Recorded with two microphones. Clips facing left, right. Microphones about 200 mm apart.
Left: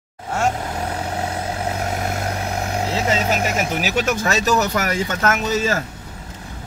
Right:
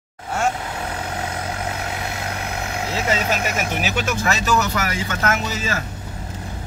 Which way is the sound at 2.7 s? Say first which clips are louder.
Left 4 dB; 35° left (ahead or behind).